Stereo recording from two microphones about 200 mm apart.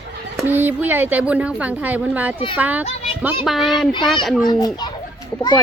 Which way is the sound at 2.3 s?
25° left (ahead or behind).